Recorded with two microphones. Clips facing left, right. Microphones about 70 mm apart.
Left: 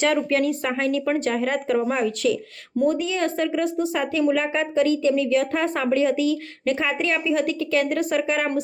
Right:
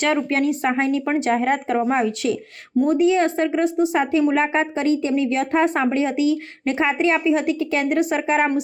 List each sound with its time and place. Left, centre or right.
0.1 s speech: right